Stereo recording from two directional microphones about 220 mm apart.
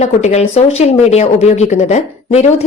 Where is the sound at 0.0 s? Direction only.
30° left (ahead or behind).